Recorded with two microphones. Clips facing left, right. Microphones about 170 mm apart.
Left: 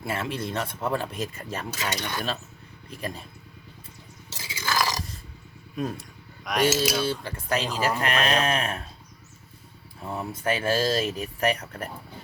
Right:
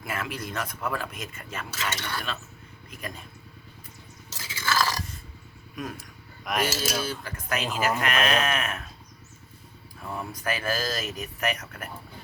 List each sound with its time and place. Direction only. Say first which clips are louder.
0.0 s speech: left 4 dB; 30° left (ahead or behind)
1.8 s mechanisms: left 1 dB; 15° left (ahead or behind)
2.9 s a man's voice: left 4 dB; 30° left (ahead or behind)
4.4 s a sound: even; 15° left (ahead or behind)
5.8 s speech: left 5 dB; 30° left (ahead or behind)
6.4 s cutlery: left 3 dB; centre (ahead or behind)
7.0 s a man's voice: left 5 dB; 30° left (ahead or behind)
10.0 s speech: left 3 dB; 25° left (ahead or behind)